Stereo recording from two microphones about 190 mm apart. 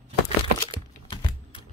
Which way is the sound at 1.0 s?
25° left (ahead or behind).